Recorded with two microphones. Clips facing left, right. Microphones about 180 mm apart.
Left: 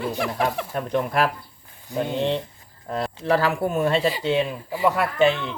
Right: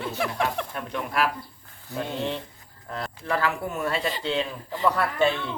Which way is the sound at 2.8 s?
30° left (ahead or behind).